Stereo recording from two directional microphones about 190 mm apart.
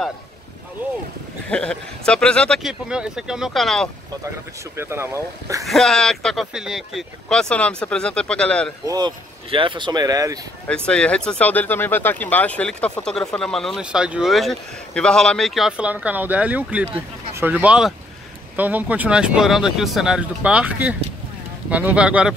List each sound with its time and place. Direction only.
1.5 s speech: 5° left (ahead or behind)
4.7 s speech: 15° right (ahead or behind)
5.7 s speech: centre (ahead or behind)
8.8 s speech: 20° right (ahead or behind)
10.7 s speech: 5° left (ahead or behind)